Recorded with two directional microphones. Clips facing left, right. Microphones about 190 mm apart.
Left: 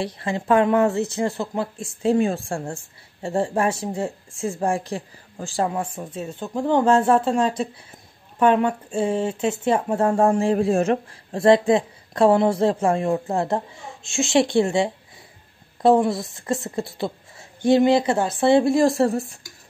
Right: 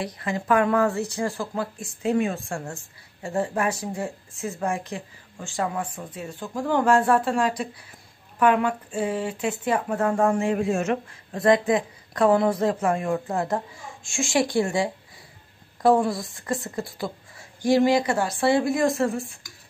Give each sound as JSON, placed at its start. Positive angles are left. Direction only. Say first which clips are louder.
{"t": 0.0, "sound": "speech", "louder": "left 3 dB", "side_deg": 25}